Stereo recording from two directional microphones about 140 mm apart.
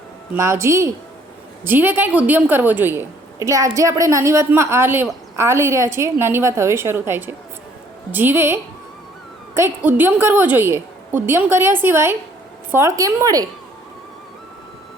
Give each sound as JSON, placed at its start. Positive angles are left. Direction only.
{"t": 0.3, "sound": "a woman's voice", "side_deg": -20}
{"t": 9.6, "sound": "a woman's voice", "side_deg": -15}